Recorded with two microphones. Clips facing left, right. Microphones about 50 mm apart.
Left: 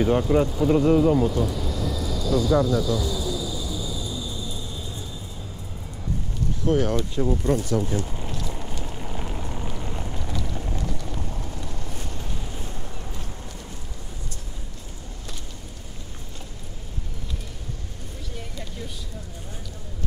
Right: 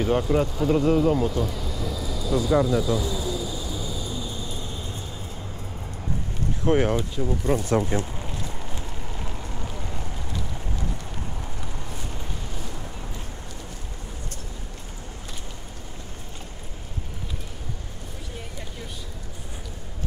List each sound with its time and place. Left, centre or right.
0.0 s vehicle: centre; by 5.0 s right
6.6 s speech: right
7.2 s speech: centre
7.5 s speech: right
8.5 s vehicle: centre
9.0 s vehicle: centre